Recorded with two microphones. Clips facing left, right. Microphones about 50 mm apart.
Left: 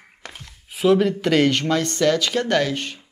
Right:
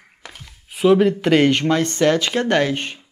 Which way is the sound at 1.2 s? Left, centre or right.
Centre.